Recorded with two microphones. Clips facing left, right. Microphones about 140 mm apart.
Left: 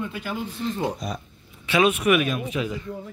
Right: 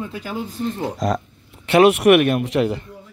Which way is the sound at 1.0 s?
90° right.